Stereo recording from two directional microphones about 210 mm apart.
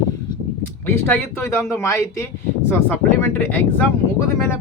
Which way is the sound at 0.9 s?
10° left (ahead or behind).